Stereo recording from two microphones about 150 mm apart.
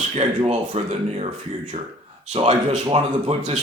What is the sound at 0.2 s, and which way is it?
Speech, 40° right (ahead or behind).